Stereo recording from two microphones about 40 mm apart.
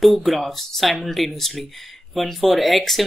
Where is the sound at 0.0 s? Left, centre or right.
Centre.